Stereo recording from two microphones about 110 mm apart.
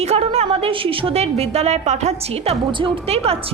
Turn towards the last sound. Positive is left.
turn(degrees=-65)  # may be behind; listen again after turning